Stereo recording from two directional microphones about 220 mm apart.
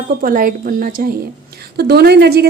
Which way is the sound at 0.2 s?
40° right (ahead or behind).